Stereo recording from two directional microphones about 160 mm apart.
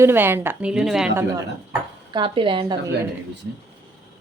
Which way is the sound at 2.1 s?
30° right (ahead or behind).